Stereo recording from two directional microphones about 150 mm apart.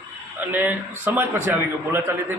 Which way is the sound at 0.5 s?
10° right (ahead or behind).